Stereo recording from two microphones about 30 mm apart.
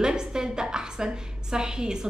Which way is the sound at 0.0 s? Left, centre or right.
Right.